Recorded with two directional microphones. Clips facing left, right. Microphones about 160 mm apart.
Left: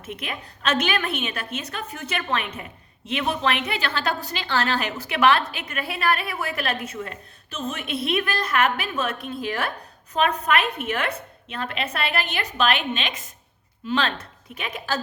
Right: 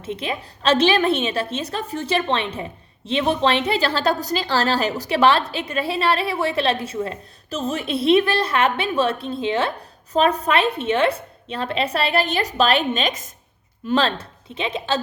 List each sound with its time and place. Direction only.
0.0 s a woman's voice: 30° right (ahead or behind)